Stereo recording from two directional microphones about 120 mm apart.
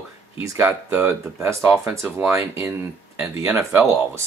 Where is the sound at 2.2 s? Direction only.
25° right (ahead or behind).